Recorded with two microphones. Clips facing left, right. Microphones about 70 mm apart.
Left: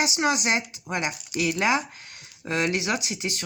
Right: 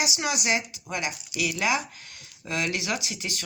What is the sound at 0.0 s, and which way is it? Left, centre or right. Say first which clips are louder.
Speech: left 4 dB; left.